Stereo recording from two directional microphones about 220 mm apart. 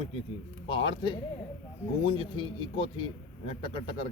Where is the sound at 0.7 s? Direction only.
20° left (ahead or behind).